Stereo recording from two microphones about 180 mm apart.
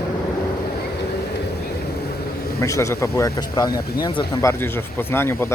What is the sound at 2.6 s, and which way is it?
Speech, 15° left (ahead or behind).